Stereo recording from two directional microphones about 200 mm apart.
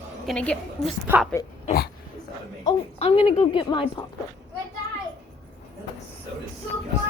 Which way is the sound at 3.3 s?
25° left (ahead or behind).